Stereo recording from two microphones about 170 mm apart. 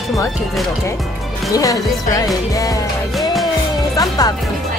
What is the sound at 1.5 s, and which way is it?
Speech, 20° left (ahead or behind).